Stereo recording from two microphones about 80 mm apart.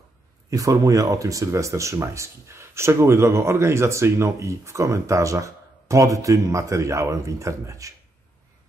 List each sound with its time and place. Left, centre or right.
0.5 s speech: right